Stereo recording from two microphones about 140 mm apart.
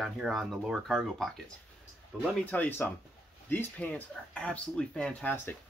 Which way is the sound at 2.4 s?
10° left (ahead or behind).